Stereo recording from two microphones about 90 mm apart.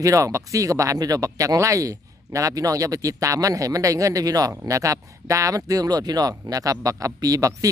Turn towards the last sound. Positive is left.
turn(degrees=-40)  # may be behind; listen again after turning